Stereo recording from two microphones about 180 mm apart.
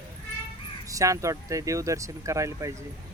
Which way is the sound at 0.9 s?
20° right (ahead or behind).